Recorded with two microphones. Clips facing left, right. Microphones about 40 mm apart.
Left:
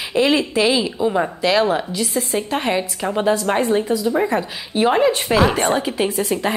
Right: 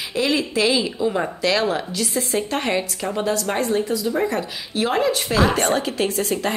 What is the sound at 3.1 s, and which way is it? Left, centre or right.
Speech, left.